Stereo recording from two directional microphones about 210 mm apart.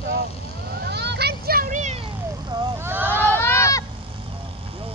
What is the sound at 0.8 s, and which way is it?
Vehicle, 50° right (ahead or behind).